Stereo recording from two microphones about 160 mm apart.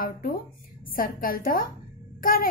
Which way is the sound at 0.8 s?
65° left (ahead or behind).